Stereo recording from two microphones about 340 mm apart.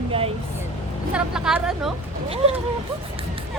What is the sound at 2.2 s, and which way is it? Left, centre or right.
Speech, centre.